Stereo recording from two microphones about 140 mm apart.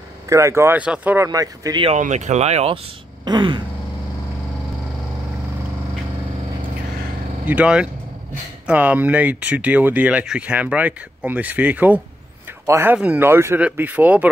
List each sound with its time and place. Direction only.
0.3 s speech: 20° right (ahead or behind)
1.2 s speech: 25° right (ahead or behind)
1.9 s speech: 60° right (ahead or behind)
3.3 s a sound: 30° right (ahead or behind)
7.4 s speech: 10° right (ahead or behind)